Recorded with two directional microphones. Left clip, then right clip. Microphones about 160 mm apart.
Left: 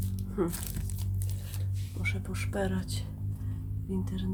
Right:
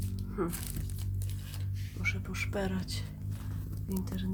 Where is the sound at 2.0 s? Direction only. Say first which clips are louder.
Right 1 dB; 5° left (ahead or behind).